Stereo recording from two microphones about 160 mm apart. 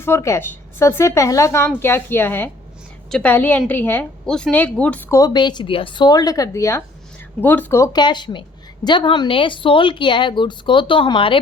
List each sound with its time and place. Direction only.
0.0 s a woman's voice: 15° left (ahead or behind)
5.1 s a woman's voice: 25° left (ahead or behind)
7.9 s a woman's voice: 30° left (ahead or behind)